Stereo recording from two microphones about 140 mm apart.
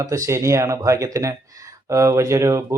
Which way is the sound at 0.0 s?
25° right (ahead or behind).